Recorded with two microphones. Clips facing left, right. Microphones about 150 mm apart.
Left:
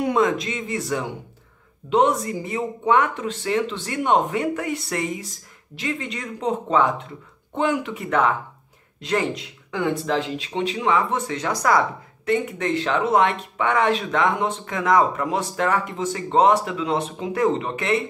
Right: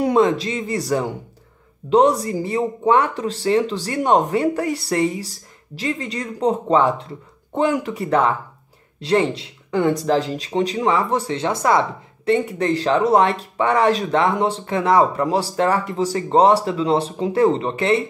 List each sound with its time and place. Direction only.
0.0 s speech: 30° right (ahead or behind)